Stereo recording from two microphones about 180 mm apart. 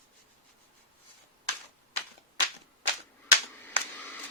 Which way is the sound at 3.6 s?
10° left (ahead or behind).